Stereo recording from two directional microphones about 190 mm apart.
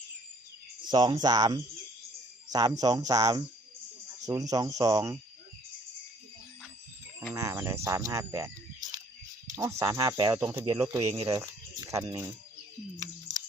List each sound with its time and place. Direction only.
0.9 s speech: 20° right (ahead or behind)
7.3 s speech: 15° right (ahead or behind)
10.5 s speech: 30° right (ahead or behind)
11.0 s speech: 30° right (ahead or behind)
11.3 s speech: 20° right (ahead or behind)